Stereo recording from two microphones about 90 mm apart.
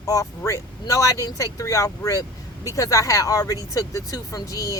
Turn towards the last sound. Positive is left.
turn(degrees=40)  # may be behind; listen again after turning